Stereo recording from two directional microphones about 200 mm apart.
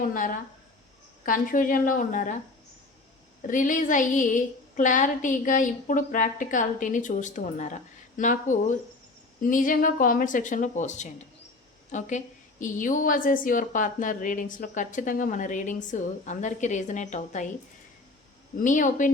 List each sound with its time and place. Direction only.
0.0 s a woman's voice: 40° left (ahead or behind)
3.4 s a woman's voice: 40° left (ahead or behind)
18.6 s a woman's voice: 40° left (ahead or behind)